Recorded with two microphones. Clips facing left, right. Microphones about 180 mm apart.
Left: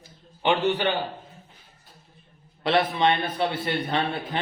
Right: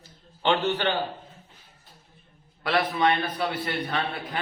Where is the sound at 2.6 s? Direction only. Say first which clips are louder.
Left 2 dB; 25° left (ahead or behind).